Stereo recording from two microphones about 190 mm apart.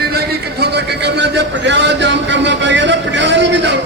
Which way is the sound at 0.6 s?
60° right (ahead or behind).